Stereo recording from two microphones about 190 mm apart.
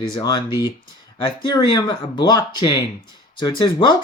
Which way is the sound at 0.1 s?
25° left (ahead or behind).